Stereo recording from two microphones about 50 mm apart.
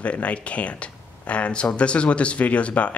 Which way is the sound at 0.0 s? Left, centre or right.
Left.